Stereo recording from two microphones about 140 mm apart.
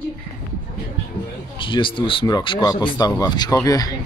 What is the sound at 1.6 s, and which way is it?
Speech, 35° left (ahead or behind).